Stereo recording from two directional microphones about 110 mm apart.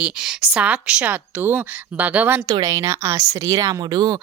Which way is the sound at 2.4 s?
30° right (ahead or behind).